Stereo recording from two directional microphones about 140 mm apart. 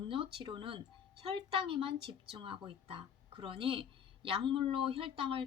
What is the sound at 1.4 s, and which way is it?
Speech, 35° right (ahead or behind).